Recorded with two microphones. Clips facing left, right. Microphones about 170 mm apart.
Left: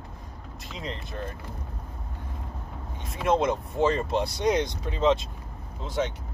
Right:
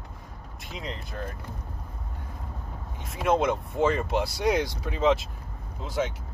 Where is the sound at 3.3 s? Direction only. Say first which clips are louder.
Even; centre (ahead or behind).